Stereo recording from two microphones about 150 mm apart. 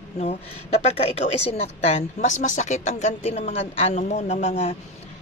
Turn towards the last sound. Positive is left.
turn(degrees=45)  # may be behind; listen again after turning